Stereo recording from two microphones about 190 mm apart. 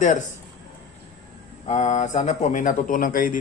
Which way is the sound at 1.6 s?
40° left (ahead or behind).